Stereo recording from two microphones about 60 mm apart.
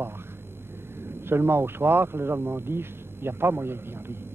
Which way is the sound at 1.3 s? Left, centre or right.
Right.